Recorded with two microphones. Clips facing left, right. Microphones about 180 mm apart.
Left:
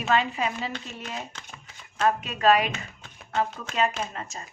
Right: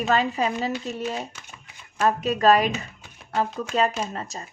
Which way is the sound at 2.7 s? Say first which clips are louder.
Right 5 dB; 10° right (ahead or behind).